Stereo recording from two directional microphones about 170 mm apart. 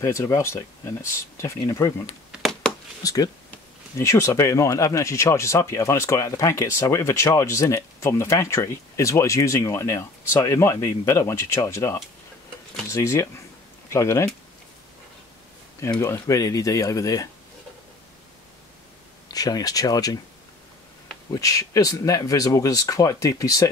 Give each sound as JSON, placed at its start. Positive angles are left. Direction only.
{"t": 0.0, "sound": "speech", "side_deg": 15}
{"t": 2.3, "sound": "a sound", "side_deg": 0}
{"t": 3.0, "sound": "speech", "side_deg": 20}
{"t": 15.8, "sound": "speech", "side_deg": 15}
{"t": 19.2, "sound": "speech", "side_deg": 20}
{"t": 21.3, "sound": "speech", "side_deg": 20}